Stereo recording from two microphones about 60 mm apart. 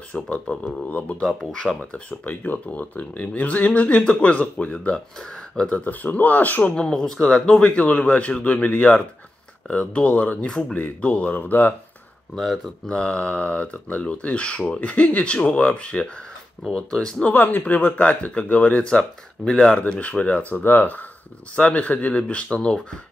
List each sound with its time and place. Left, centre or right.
0.1 s speech: centre
1.2 s speech: centre
1.8 s speech: left
6.7 s speech: centre
7.8 s speech: left
12.4 s speech: centre
12.8 s speech: centre
17.3 s speech: left